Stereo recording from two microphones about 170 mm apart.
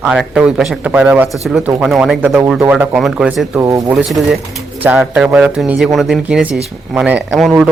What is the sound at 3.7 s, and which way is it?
Speech, 20° right (ahead or behind).